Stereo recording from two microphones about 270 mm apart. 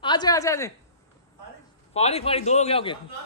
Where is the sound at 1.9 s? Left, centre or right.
Left.